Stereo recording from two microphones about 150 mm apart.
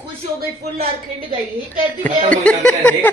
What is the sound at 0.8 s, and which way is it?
Speech, 35° right (ahead or behind).